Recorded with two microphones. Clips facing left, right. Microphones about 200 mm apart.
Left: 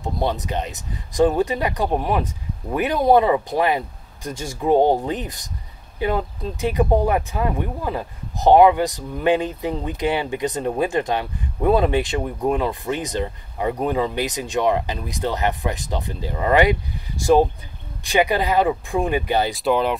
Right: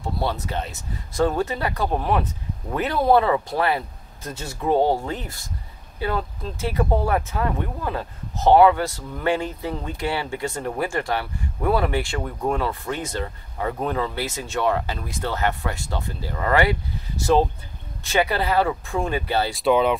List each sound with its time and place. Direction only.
0.0 s speech: 15° left (ahead or behind)
19.5 s speech: centre (ahead or behind)